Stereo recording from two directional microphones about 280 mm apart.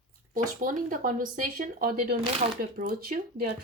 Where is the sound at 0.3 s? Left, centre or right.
Right.